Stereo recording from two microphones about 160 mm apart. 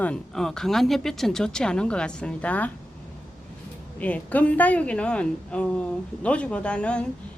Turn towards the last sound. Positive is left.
turn(degrees=5)  # may be behind; listen again after turning